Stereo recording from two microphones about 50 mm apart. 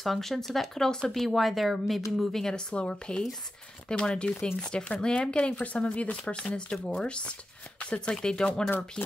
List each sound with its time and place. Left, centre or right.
0.0 s speech: centre
2.1 s speech: centre
2.7 s speech: left